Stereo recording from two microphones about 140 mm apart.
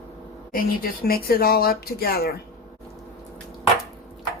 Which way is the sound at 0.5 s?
90° left.